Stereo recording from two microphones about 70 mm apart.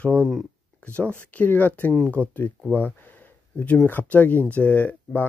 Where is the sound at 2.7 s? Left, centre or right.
Left.